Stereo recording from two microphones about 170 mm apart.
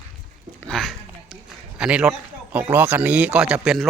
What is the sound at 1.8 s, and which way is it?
A man's voice, 5° right (ahead or behind).